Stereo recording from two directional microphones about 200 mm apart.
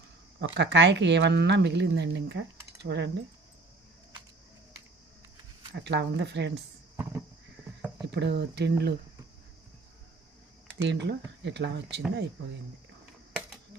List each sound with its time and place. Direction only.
0.4 s speech: 60° right (ahead or behind)
5.7 s speech: 60° right (ahead or behind)
6.9 s a sound: 10° right (ahead or behind)
8.0 s speech: 60° right (ahead or behind)
10.8 s speech: 60° right (ahead or behind)